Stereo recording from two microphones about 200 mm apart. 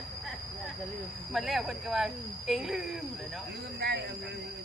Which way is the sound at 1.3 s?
Centre (ahead or behind).